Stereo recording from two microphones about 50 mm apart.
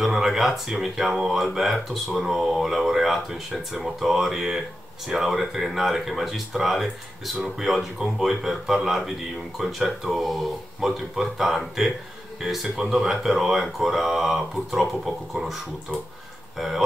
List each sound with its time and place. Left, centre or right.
0.0 s speech: centre
16.5 s speech: centre